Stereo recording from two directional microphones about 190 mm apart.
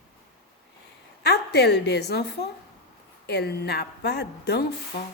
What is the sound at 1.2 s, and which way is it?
A woman's voice, 60° left (ahead or behind).